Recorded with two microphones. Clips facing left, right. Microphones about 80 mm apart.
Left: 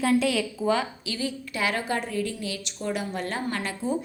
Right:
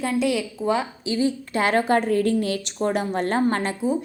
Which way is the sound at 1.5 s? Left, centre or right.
Right.